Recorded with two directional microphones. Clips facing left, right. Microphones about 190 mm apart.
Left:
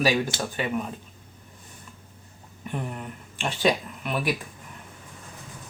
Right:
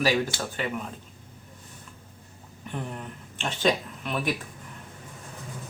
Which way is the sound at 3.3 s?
10° left (ahead or behind).